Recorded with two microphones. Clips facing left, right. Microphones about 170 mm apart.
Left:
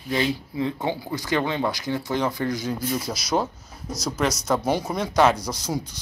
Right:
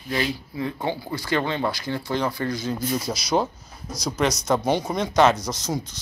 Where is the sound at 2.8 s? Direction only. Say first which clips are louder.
Right 1 dB; centre (ahead or behind).